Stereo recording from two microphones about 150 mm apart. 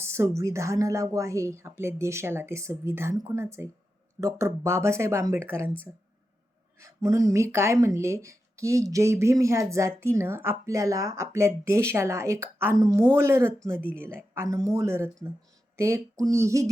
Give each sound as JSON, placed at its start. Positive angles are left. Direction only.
{"t": 0.0, "sound": "speech", "side_deg": -20}
{"t": 6.7, "sound": "speech", "side_deg": -20}